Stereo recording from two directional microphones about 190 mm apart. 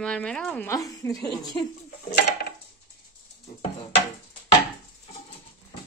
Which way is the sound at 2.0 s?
55° left (ahead or behind).